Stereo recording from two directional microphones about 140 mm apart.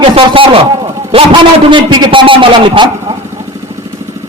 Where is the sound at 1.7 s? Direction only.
35° right (ahead or behind).